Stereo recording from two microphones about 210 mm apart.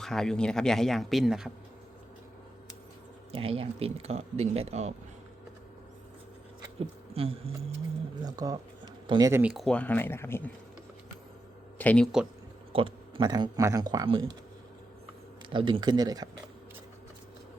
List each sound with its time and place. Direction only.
0.0 s speech: centre (ahead or behind)
3.3 s speech: 25° right (ahead or behind)
6.7 s a sound: 30° right (ahead or behind)
8.2 s speech: 15° right (ahead or behind)
9.4 s speech: centre (ahead or behind)
11.8 s speech: 5° left (ahead or behind)
12.7 s speech: 25° right (ahead or behind)
15.4 s speech: 25° right (ahead or behind)